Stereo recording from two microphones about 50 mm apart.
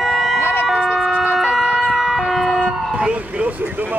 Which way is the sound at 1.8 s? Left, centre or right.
Centre.